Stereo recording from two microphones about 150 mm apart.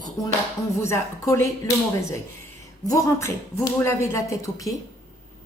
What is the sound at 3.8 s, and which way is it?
Speech, 20° left (ahead or behind).